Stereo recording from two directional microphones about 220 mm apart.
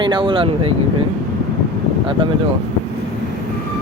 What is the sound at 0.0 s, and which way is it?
Speech, 20° right (ahead or behind).